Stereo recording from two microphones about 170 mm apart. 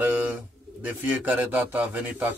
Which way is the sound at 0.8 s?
10° right (ahead or behind).